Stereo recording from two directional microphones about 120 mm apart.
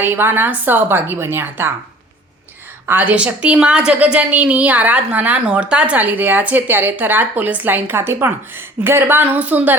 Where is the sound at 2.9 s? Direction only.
15° right (ahead or behind).